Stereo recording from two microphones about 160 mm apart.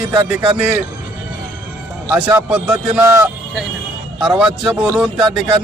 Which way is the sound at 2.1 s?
10° right (ahead or behind).